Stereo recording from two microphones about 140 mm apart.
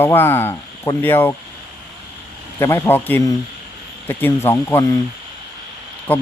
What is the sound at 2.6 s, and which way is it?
Speech, 20° left (ahead or behind).